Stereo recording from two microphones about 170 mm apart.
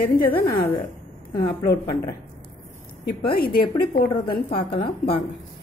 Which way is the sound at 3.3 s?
60° left (ahead or behind).